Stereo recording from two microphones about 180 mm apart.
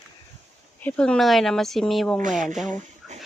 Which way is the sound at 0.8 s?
5° left (ahead or behind).